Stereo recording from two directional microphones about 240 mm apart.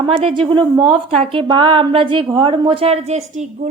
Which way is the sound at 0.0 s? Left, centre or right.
Right.